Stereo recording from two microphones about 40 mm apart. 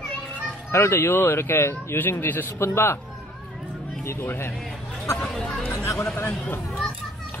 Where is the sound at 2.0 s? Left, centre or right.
Left.